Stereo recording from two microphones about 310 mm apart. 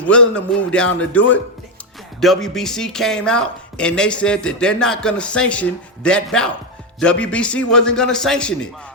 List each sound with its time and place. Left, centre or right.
0.0 s speech: centre